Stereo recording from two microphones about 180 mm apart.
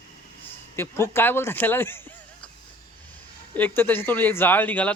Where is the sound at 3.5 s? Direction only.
10° left (ahead or behind).